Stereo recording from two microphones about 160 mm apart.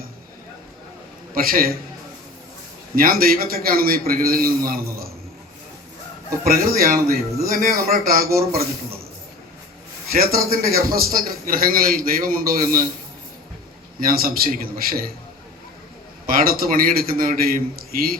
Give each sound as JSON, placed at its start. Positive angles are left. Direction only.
{"t": 1.4, "sound": "a man's voice", "side_deg": -65}
{"t": 2.9, "sound": "a man's voice", "side_deg": -65}
{"t": 6.4, "sound": "a man's voice", "side_deg": -65}
{"t": 10.1, "sound": "a man's voice", "side_deg": -70}
{"t": 14.0, "sound": "a man's voice", "side_deg": -65}
{"t": 16.2, "sound": "a man's voice", "side_deg": -65}